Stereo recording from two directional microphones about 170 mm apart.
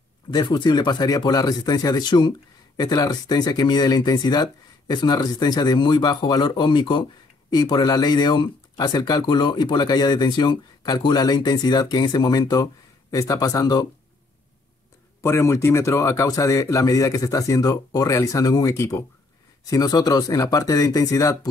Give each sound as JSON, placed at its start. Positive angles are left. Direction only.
{"t": 0.3, "sound": "speech", "side_deg": 25}
{"t": 15.2, "sound": "speech", "side_deg": 15}